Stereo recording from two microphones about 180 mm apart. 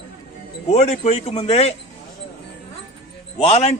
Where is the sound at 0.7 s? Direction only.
35° left (ahead or behind).